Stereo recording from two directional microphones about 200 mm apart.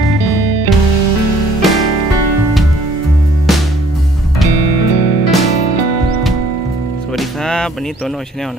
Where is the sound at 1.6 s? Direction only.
Centre (ahead or behind).